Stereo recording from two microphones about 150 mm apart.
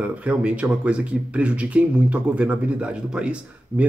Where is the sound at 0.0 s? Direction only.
10° right (ahead or behind).